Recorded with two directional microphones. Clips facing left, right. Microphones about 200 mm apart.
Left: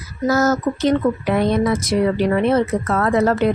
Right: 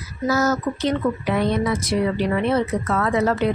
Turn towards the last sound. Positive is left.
turn(degrees=45)  # may be behind; listen again after turning